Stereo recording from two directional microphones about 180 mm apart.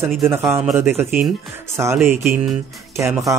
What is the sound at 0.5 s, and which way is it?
Speech, 10° right (ahead or behind).